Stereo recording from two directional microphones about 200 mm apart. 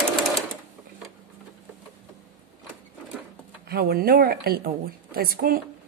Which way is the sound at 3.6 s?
50° right (ahead or behind).